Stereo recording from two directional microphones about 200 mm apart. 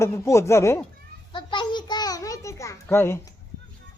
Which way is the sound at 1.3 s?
25° left (ahead or behind).